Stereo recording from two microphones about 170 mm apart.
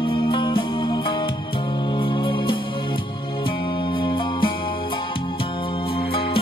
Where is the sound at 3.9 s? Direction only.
30° left (ahead or behind).